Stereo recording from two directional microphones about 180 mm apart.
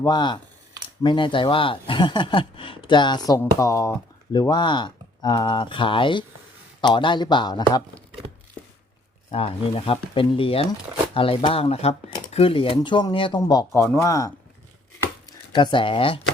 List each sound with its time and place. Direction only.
0.0 s speech: 25° left (ahead or behind)
9.3 s speech: 30° left (ahead or behind)
15.0 s chopping: 20° left (ahead or behind)